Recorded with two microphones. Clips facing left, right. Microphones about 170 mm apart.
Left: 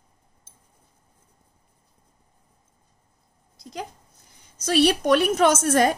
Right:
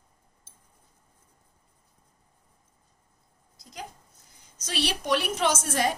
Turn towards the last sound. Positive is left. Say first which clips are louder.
# left 8 dB
turn(degrees=50)  # may be behind; listen again after turning